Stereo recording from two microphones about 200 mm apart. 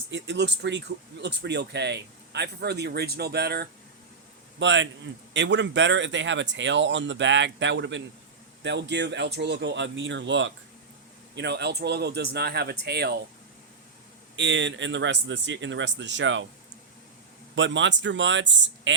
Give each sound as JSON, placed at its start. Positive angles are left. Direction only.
{"t": 0.1, "sound": "speech", "side_deg": -60}
{"t": 4.6, "sound": "speech", "side_deg": -65}
{"t": 14.3, "sound": "speech", "side_deg": -65}
{"t": 17.5, "sound": "speech", "side_deg": -65}